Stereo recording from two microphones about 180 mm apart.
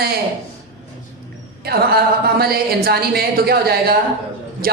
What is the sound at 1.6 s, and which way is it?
A woman's voice, 60° right (ahead or behind).